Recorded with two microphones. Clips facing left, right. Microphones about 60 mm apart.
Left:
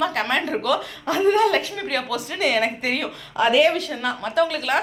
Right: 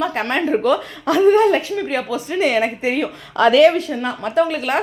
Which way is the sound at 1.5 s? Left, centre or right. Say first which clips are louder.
Right 4 dB; centre.